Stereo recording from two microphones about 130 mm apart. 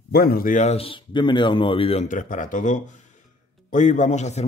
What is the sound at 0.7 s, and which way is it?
Speech, 40° left (ahead or behind).